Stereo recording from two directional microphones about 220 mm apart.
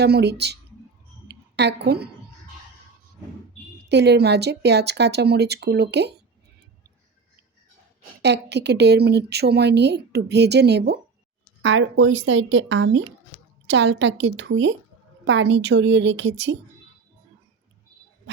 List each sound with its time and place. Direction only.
0.0 s speech: 50° right (ahead or behind)
1.3 s a sound: 50° right (ahead or behind)
3.8 s speech: 50° right (ahead or behind)
8.2 s speech: 50° right (ahead or behind)